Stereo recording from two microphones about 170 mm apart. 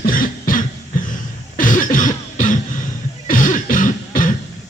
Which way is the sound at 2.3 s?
50° left (ahead or behind).